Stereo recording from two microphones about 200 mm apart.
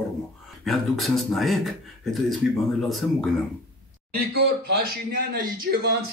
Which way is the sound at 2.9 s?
Centre (ahead or behind).